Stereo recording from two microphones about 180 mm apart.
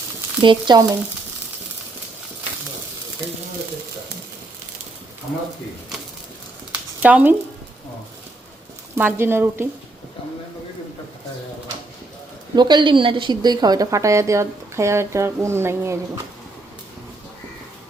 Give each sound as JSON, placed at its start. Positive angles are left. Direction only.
{"t": 0.4, "sound": "speech", "side_deg": -20}
{"t": 7.0, "sound": "a woman's voice", "side_deg": -10}
{"t": 9.0, "sound": "a woman's voice", "side_deg": -10}
{"t": 12.5, "sound": "a woman's voice", "side_deg": -25}